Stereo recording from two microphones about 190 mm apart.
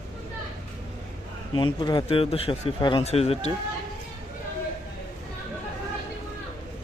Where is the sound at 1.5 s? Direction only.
25° left (ahead or behind).